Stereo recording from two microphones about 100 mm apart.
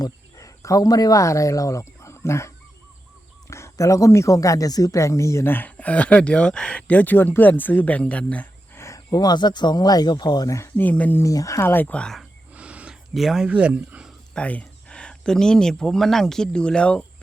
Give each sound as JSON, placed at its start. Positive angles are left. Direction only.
{"t": 0.0, "sound": "speech", "side_deg": 35}
{"t": 3.5, "sound": "speech", "side_deg": 30}
{"t": 8.8, "sound": "a sound", "side_deg": 25}
{"t": 9.1, "sound": "speech", "side_deg": 45}
{"t": 10.8, "sound": "speech", "side_deg": 15}
{"t": 11.2, "sound": "speech", "side_deg": 35}
{"t": 12.5, "sound": "a sound", "side_deg": -10}
{"t": 13.1, "sound": "speech", "side_deg": 0}
{"t": 13.5, "sound": "speech", "side_deg": -15}
{"t": 14.3, "sound": "speech", "side_deg": 10}